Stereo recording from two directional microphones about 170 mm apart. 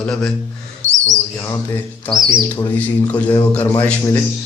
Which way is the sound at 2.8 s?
10° left (ahead or behind).